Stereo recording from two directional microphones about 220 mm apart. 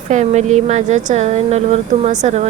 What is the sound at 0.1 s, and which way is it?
A woman's voice, 35° right (ahead or behind).